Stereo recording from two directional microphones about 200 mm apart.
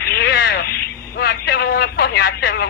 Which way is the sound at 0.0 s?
55° left (ahead or behind).